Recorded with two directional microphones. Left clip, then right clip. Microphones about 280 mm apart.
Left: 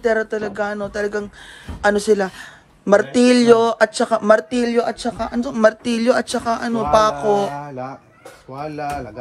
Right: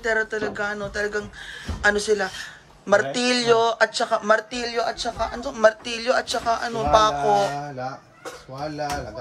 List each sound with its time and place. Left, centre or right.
0.0 s speech: centre
7.2 s mantra: left